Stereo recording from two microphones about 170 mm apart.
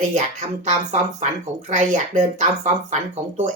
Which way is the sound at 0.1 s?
45° right (ahead or behind).